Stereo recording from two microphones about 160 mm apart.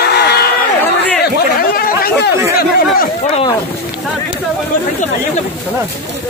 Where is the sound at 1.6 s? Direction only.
65° left (ahead or behind).